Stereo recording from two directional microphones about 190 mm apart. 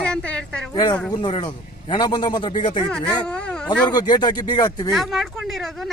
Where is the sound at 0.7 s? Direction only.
25° left (ahead or behind).